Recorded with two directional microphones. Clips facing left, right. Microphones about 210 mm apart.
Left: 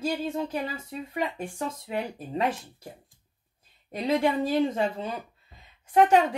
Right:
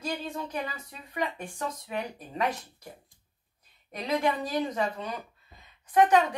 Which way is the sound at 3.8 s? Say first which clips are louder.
Left 3 dB; 30° left (ahead or behind).